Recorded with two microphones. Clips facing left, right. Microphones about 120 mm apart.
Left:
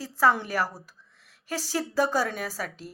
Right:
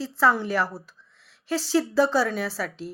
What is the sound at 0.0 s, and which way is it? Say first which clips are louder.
Speech: right 1 dB; 40° left (ahead or behind).